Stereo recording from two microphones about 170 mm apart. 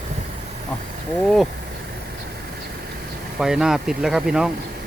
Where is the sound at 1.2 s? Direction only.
Centre (ahead or behind).